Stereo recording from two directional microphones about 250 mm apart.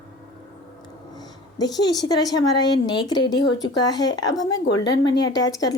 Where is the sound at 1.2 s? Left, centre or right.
Centre.